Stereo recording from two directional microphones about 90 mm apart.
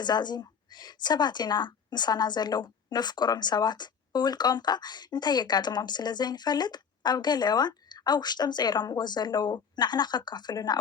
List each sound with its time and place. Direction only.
0.0 s a woman's voice: 55° left (ahead or behind)